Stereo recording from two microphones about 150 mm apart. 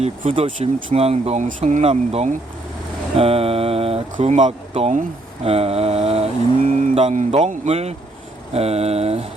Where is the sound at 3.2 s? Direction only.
40° right (ahead or behind).